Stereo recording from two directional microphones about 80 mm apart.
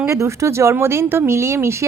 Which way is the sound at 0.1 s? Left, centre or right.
Right.